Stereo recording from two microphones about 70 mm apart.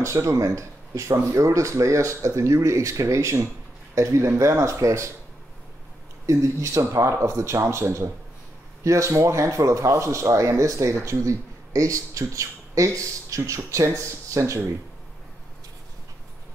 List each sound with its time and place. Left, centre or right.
0.0 s speech: right
6.2 s speech: right
8.8 s speech: right